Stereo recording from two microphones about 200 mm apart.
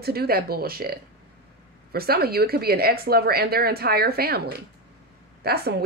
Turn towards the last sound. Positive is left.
turn(degrees=-55)  # may be behind; listen again after turning